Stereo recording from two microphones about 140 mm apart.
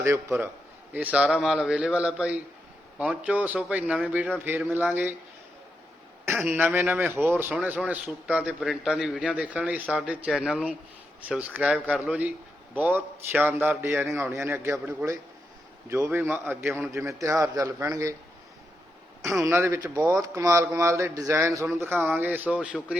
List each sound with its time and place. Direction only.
0.0 s a man's voice: 20° right (ahead or behind)
6.5 s a man's voice: 15° right (ahead or behind)
19.4 s a man's voice: 15° right (ahead or behind)